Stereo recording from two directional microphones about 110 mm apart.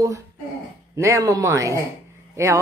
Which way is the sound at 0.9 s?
30° right (ahead or behind).